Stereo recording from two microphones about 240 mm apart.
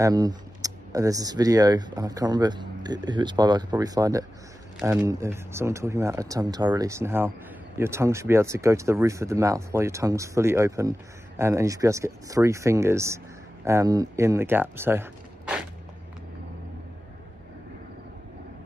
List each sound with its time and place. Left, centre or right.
0.0 s speech: centre